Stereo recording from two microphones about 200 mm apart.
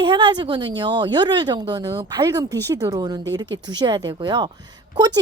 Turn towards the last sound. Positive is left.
turn(degrees=-20)  # may be behind; listen again after turning